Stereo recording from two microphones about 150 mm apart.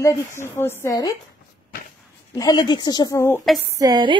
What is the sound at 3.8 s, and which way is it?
Speech, 30° right (ahead or behind).